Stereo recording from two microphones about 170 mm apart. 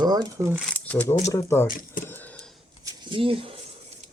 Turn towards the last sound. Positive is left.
turn(degrees=-30)  # may be behind; listen again after turning